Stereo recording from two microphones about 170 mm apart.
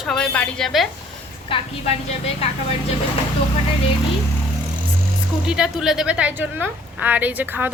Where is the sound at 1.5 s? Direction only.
35° left (ahead or behind).